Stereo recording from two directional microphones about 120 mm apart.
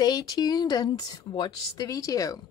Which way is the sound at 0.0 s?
35° left (ahead or behind).